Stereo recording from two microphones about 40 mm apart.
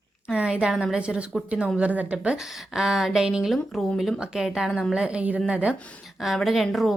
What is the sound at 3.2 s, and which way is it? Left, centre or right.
Speech, centre.